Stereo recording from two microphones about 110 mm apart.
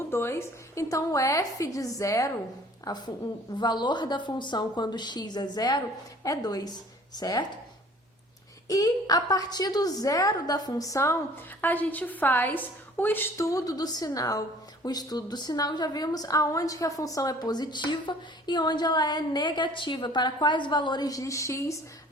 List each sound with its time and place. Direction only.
0.1 s a woman's voice: 20° left (ahead or behind)
8.6 s a woman's voice: 35° left (ahead or behind)
11.6 s a woman's voice: 15° left (ahead or behind)